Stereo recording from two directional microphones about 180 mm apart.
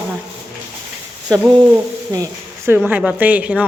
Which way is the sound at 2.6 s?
10° right (ahead or behind).